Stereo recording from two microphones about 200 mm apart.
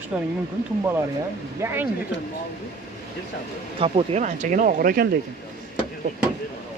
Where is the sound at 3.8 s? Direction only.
30° right (ahead or behind); by 5.1 s 45° right (ahead or behind).